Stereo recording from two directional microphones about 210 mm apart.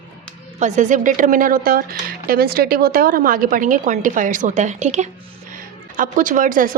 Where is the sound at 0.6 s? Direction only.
35° right (ahead or behind).